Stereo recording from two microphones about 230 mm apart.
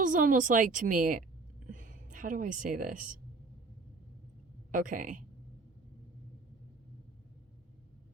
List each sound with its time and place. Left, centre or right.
0.0 s speech: right
4.7 s speech: right